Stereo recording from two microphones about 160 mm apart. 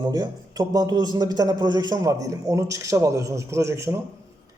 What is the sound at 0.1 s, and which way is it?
A man's voice, 25° right (ahead or behind).